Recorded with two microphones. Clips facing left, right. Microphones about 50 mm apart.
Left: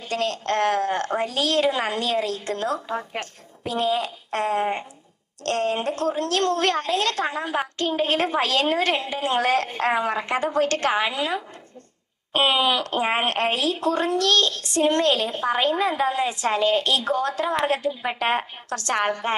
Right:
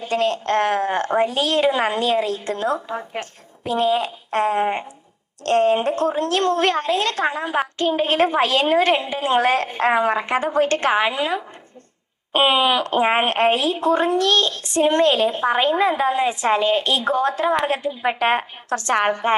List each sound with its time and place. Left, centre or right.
0.0 s a woman's voice: right